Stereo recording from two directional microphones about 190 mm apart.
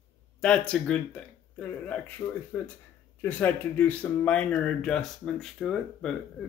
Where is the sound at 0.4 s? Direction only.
5° left (ahead or behind).